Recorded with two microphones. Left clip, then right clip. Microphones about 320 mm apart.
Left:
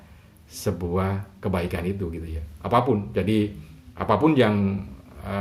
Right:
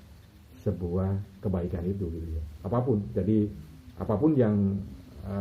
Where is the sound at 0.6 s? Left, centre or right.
Left.